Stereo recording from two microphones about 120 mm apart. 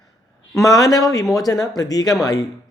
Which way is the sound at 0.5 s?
30° left (ahead or behind).